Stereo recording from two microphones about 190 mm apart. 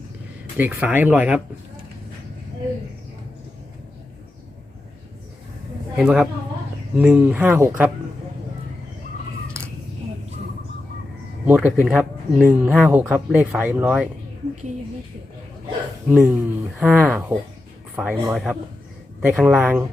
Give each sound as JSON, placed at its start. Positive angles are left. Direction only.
{"t": 0.5, "sound": "speech", "side_deg": -10}
{"t": 6.0, "sound": "speech", "side_deg": -5}
{"t": 11.4, "sound": "speech", "side_deg": -10}
{"t": 16.0, "sound": "speech", "side_deg": -10}